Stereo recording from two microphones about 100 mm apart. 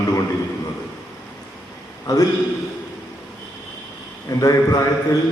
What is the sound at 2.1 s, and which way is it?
Speech, 35° left (ahead or behind).